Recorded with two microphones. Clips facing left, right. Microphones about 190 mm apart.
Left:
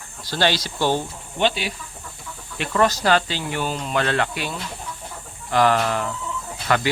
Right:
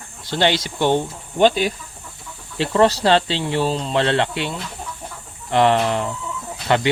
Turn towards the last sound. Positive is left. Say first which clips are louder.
# right 3 dB
turn(degrees=-25)  # may be behind; listen again after turning